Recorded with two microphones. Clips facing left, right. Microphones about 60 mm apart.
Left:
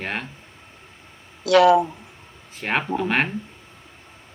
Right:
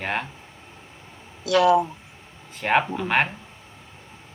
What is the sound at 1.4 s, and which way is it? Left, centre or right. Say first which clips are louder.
Speech: left 4 dB; left.